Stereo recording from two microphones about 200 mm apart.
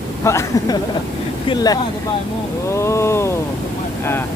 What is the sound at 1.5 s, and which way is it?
Speech, 20° left (ahead or behind).